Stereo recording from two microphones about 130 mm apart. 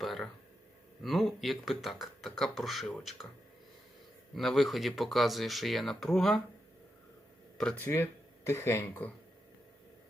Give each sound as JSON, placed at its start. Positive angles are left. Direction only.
{"t": 0.0, "sound": "speech", "side_deg": 0}
{"t": 4.4, "sound": "speech", "side_deg": 0}
{"t": 7.8, "sound": "speech", "side_deg": 20}